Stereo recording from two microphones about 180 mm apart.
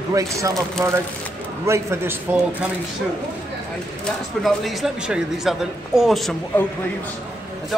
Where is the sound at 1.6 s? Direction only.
15° right (ahead or behind).